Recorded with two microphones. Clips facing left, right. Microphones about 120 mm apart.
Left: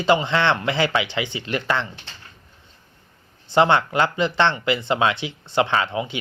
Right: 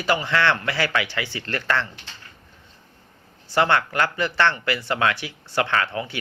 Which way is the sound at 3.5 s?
20° left (ahead or behind).